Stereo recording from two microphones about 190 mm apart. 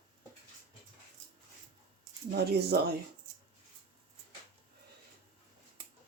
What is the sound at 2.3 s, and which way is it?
Speech, 55° right (ahead or behind).